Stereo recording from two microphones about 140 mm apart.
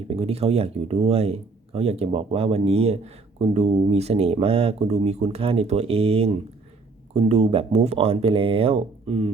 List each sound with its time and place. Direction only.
0.1 s speech: 45° right (ahead or behind)